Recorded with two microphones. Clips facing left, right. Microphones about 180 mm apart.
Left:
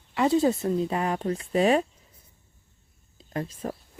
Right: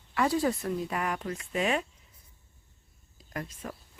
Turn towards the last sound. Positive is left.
turn(degrees=30)  # may be behind; listen again after turning